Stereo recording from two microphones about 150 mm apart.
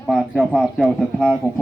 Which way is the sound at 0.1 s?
Centre (ahead or behind).